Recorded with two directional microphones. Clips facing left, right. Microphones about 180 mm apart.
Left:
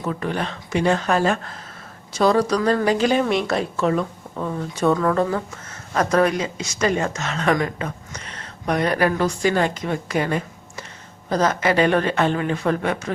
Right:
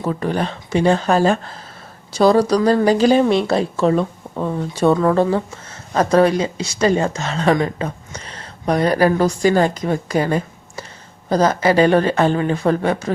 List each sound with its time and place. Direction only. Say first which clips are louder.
0.0 s speech: right 4 dB; 35° right (ahead or behind)